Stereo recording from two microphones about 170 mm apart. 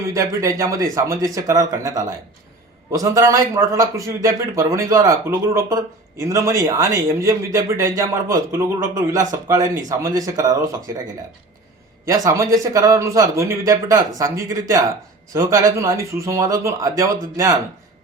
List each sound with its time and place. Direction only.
0.1 s a man's voice: 20° right (ahead or behind)
12.0 s speech: 20° right (ahead or behind)
15.3 s speech: 20° right (ahead or behind)